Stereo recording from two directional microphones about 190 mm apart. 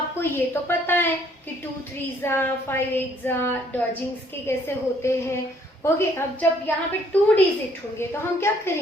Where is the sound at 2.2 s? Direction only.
10° left (ahead or behind).